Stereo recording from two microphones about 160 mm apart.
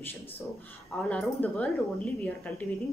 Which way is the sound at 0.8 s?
10° left (ahead or behind).